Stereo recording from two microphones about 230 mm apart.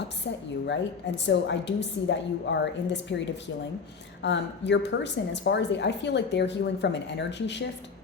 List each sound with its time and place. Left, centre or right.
0.3 s a woman's voice: left
4.2 s a woman's voice: left